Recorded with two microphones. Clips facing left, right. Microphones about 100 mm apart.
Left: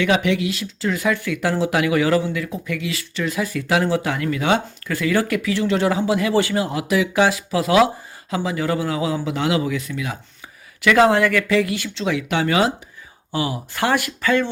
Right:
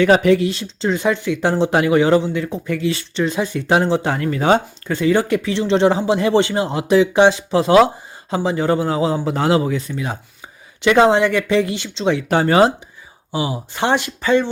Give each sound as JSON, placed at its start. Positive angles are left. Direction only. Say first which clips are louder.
{"t": 0.0, "sound": "a man's voice", "louder": "right 6 dB", "side_deg": -40}
{"t": 13.3, "sound": "speech", "louder": "right 1 dB", "side_deg": -20}